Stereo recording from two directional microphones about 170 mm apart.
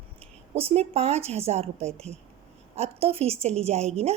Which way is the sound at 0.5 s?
35° right (ahead or behind).